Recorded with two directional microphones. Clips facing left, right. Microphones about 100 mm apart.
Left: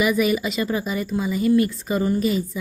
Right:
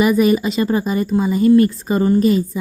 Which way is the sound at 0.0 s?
40° right (ahead or behind).